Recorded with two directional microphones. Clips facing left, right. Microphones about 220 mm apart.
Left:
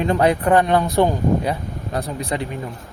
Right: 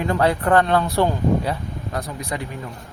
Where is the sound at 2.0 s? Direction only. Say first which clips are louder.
Left 4 dB; 30° left (ahead or behind).